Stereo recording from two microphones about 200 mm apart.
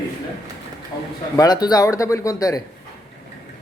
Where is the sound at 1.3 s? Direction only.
20° left (ahead or behind).